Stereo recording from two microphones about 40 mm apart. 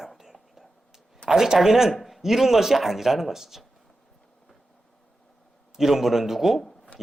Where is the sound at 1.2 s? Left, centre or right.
Centre.